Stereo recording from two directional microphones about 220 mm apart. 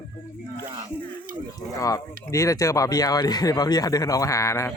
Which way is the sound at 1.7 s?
15° left (ahead or behind).